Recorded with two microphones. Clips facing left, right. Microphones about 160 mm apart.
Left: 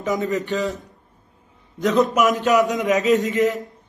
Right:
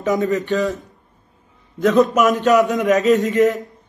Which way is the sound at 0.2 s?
20° left (ahead or behind).